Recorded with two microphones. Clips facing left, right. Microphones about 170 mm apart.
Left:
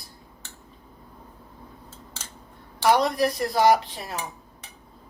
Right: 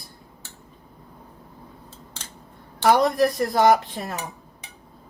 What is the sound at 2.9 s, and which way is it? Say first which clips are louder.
Speech: right 3 dB; 50° right (ahead or behind).